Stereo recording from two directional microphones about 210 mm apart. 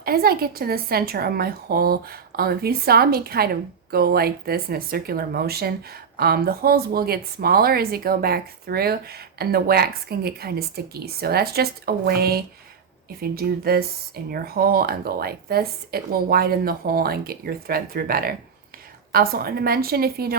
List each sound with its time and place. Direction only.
0.0 s a woman's voice: 45° right (ahead or behind)